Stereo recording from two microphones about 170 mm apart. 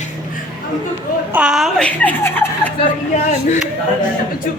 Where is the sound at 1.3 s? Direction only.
5° right (ahead or behind); by 2.7 s 10° left (ahead or behind).